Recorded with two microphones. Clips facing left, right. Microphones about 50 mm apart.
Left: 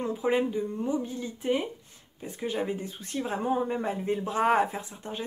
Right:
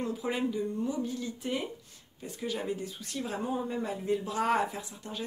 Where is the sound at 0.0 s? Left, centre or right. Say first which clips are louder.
Left 5 dB; left.